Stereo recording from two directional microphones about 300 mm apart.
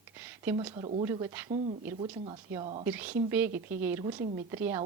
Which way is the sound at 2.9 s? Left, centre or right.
Centre.